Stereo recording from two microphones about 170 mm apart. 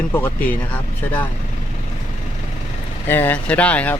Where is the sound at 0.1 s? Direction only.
10° left (ahead or behind).